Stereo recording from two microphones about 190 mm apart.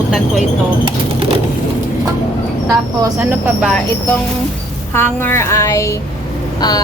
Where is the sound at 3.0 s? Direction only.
10° right (ahead or behind).